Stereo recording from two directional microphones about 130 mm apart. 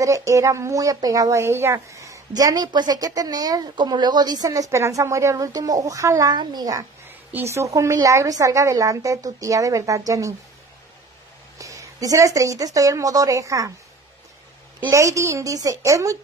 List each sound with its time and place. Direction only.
0.0 s speech: 25° right (ahead or behind)
11.5 s a woman's voice: 25° right (ahead or behind)
14.9 s speech: 25° right (ahead or behind)